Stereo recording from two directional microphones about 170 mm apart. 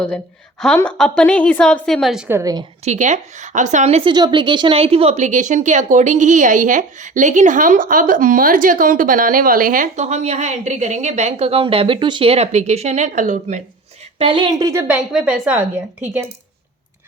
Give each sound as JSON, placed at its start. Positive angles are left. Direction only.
{"t": 0.8, "sound": "a woman's voice", "side_deg": 5}
{"t": 2.3, "sound": "a woman's voice", "side_deg": -20}
{"t": 2.8, "sound": "speech", "side_deg": -45}
{"t": 4.1, "sound": "speech", "side_deg": -25}
{"t": 14.2, "sound": "a woman's voice", "side_deg": -30}
{"t": 14.7, "sound": "speech", "side_deg": -15}
{"t": 14.9, "sound": "a woman's voice", "side_deg": -5}